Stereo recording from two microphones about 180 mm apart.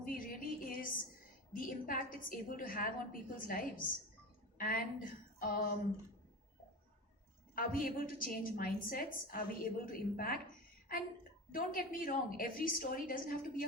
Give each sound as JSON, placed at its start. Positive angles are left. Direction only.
{"t": 0.0, "sound": "a sound", "side_deg": 50}
{"t": 1.5, "sound": "a woman's voice", "side_deg": 50}
{"t": 7.5, "sound": "a woman's voice", "side_deg": 50}